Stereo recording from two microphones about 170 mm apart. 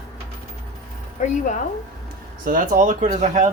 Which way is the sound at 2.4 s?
50° right (ahead or behind).